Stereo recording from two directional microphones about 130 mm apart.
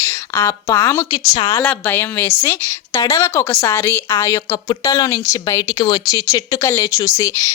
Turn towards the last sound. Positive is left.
turn(degrees=25)  # may be behind; listen again after turning